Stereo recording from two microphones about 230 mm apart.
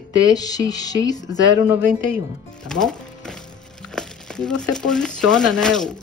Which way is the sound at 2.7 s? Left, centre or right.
Centre.